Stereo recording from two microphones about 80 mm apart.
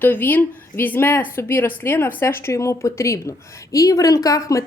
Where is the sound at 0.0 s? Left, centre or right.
Left.